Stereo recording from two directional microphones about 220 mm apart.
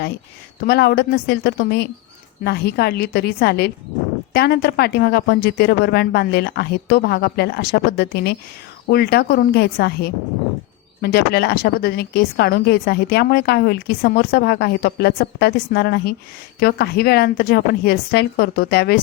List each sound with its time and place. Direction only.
0.7 s a woman's voice: 45° left (ahead or behind)